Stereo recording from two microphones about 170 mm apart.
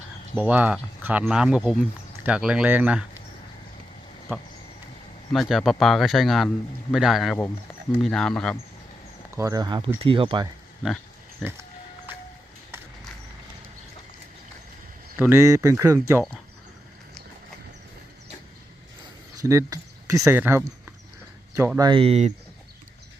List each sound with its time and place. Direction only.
0.3 s speech: 10° right (ahead or behind)
5.3 s speech: centre (ahead or behind)
9.3 s speech: 20° right (ahead or behind)
11.4 s speech: centre (ahead or behind)
15.2 s speech: 15° right (ahead or behind)
19.4 s speech: 20° right (ahead or behind)
21.8 s speech: 30° right (ahead or behind)